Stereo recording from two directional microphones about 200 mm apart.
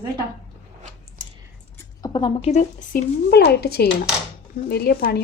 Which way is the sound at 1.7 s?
20° left (ahead or behind).